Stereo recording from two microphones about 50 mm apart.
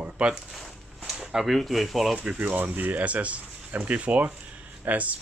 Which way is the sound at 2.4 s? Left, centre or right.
Right.